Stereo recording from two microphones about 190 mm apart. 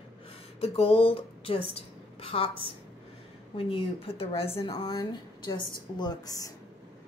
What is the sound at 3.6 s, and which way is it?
Speech, 30° left (ahead or behind).